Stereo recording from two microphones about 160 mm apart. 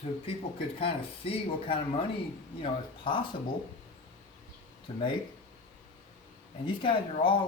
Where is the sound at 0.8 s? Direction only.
35° left (ahead or behind).